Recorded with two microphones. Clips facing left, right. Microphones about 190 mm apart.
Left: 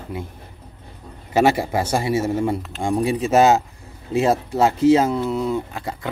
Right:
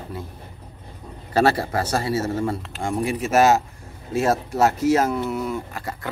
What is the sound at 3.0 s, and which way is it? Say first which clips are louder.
Speech: left 3 dB; 30° left (ahead or behind).